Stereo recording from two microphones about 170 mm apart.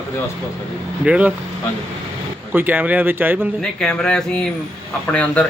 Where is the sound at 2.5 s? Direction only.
10° right (ahead or behind).